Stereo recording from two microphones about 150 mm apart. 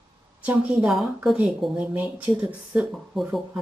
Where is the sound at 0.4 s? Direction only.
10° right (ahead or behind).